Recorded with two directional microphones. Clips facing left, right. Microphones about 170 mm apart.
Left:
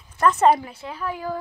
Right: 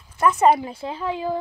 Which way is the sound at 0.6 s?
30° right (ahead or behind).